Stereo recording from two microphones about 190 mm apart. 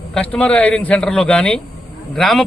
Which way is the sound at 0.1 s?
5° left (ahead or behind).